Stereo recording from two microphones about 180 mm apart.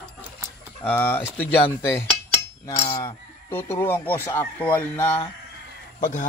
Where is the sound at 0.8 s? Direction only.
10° left (ahead or behind).